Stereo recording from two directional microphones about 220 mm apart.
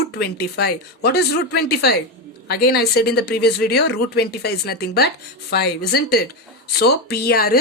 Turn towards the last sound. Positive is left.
turn(degrees=45)  # may be behind; listen again after turning